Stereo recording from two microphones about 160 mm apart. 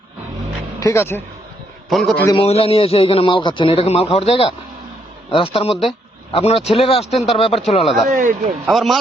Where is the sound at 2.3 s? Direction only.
40° left (ahead or behind).